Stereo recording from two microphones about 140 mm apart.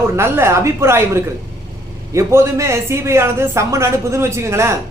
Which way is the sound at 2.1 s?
20° right (ahead or behind).